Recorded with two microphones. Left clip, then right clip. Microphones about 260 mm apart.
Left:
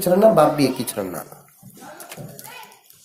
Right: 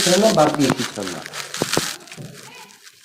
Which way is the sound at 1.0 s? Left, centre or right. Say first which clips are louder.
Left 1 dB; left.